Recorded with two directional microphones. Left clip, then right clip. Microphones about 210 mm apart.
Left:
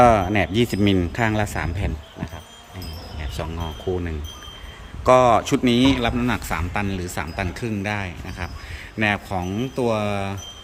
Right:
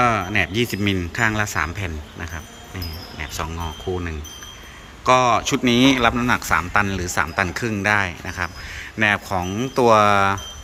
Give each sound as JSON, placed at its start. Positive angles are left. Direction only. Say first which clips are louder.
{"t": 0.0, "sound": "a man's voice", "louder": "left 3 dB", "side_deg": 15}
{"t": 5.0, "sound": "a man's voice", "louder": "left 1 dB", "side_deg": 15}